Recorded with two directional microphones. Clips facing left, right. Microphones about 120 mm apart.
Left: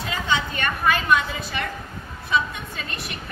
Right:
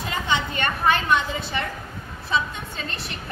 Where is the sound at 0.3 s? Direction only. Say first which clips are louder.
Even; 25° right (ahead or behind).